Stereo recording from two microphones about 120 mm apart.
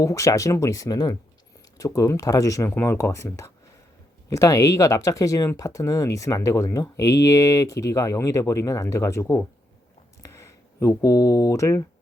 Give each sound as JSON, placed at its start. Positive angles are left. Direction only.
{"t": 0.0, "sound": "speech", "side_deg": 25}